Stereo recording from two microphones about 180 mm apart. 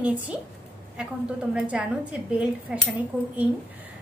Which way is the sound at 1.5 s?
5° right (ahead or behind).